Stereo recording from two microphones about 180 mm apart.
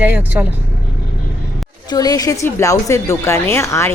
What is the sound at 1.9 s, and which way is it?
A woman's voice, 20° left (ahead or behind).